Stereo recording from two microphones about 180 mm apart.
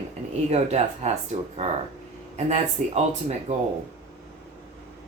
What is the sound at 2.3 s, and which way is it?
Speech, 40° right (ahead or behind).